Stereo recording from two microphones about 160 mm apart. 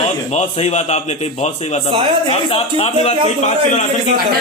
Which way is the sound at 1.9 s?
35° right (ahead or behind).